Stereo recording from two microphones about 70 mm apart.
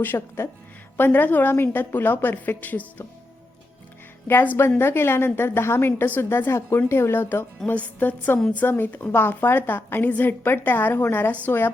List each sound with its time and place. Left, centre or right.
0.0 s a woman's voice: left
4.3 s a woman's voice: left